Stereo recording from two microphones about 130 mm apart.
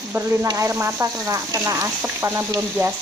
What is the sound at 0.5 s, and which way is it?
Speech, 20° right (ahead or behind).